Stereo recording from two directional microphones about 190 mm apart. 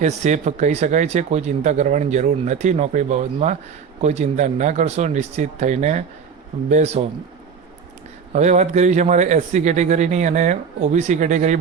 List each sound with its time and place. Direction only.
0.0 s speech: 40° right (ahead or behind)
8.3 s speech: 40° right (ahead or behind)